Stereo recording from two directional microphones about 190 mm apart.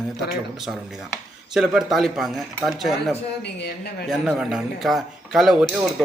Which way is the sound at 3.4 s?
60° left (ahead or behind).